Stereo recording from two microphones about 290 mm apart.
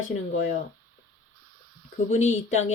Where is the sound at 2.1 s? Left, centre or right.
Left.